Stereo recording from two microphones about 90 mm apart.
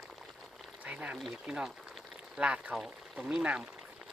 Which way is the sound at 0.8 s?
15° right (ahead or behind).